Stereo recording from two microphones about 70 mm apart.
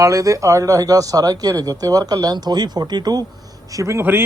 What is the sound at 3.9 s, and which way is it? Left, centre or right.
Speech, right.